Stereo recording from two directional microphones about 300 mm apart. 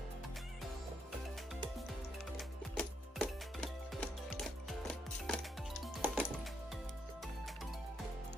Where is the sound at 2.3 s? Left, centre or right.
Centre.